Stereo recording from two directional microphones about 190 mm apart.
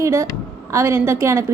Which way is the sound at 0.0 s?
15° right (ahead or behind).